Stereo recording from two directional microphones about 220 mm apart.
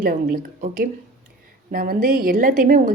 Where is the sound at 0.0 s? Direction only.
40° right (ahead or behind).